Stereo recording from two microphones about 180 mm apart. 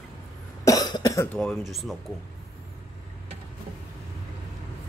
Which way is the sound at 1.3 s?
5° left (ahead or behind).